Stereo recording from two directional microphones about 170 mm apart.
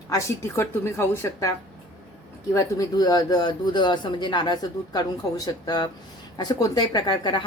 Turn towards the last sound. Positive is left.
turn(degrees=25)  # may be behind; listen again after turning